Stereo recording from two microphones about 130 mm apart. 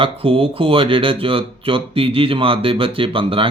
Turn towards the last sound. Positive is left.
turn(degrees=-45)  # may be behind; listen again after turning